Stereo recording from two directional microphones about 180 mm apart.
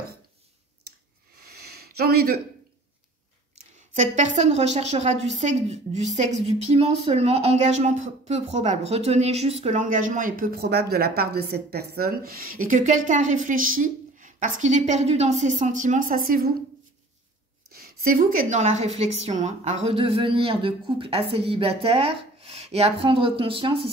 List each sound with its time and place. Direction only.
1.4 s a sound: 60° right (ahead or behind)
3.9 s a woman's voice: 40° right (ahead or behind)
17.7 s a woman's voice: 55° right (ahead or behind); by 23.9 s 30° right (ahead or behind)